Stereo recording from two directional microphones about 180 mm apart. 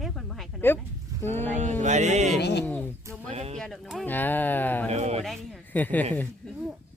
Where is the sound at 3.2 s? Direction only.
35° right (ahead or behind).